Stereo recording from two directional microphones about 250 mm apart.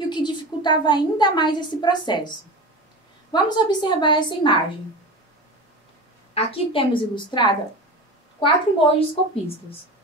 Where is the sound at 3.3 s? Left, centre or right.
Centre.